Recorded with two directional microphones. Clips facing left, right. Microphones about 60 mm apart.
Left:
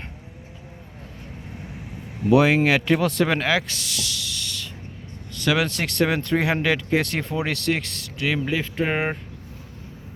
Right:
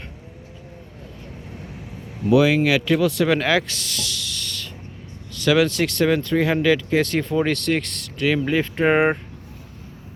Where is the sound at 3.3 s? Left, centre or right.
Centre.